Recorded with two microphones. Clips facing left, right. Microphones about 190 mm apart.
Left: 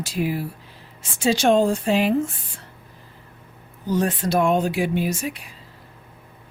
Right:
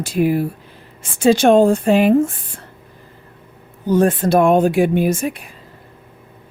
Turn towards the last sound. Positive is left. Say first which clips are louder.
# right 7 dB
turn(degrees=-50)  # may be behind; listen again after turning